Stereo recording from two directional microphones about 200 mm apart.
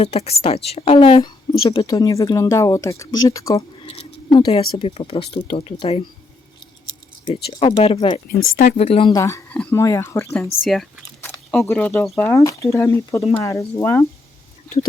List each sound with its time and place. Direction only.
0.0 s a woman's voice: 30° left (ahead or behind)
7.5 s a woman's voice: 30° left (ahead or behind)
10.7 s speech: centre (ahead or behind)